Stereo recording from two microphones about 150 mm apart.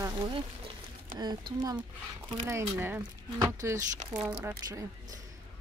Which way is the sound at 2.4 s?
15° right (ahead or behind).